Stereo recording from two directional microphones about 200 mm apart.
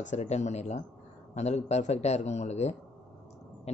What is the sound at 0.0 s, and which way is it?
Speech, 35° left (ahead or behind).